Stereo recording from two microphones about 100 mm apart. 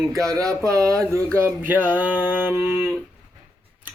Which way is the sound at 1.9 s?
20° right (ahead or behind).